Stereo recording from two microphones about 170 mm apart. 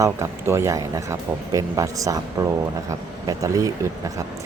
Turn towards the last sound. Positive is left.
turn(degrees=-20)  # may be behind; listen again after turning